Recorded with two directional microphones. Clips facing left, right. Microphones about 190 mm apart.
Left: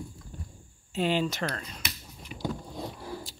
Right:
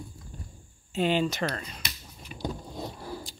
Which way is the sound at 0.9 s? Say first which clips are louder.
Right 2 dB; centre (ahead or behind).